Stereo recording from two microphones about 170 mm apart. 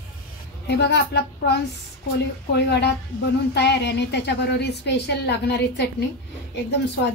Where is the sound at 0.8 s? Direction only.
80° left.